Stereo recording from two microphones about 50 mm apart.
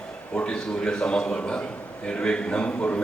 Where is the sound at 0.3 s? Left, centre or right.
Centre.